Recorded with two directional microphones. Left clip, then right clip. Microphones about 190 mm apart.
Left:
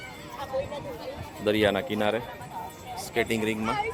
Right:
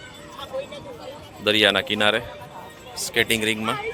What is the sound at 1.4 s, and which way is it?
Speech, 10° left (ahead or behind).